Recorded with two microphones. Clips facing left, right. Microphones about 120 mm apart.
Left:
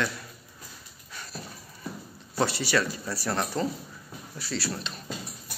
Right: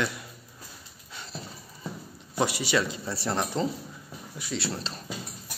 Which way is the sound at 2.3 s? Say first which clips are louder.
Even; 15° right (ahead or behind).